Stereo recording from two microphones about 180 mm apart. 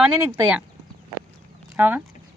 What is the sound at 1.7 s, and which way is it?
Speech, 10° right (ahead or behind).